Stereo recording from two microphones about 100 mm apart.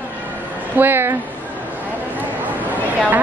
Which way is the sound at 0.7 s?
20° right (ahead or behind).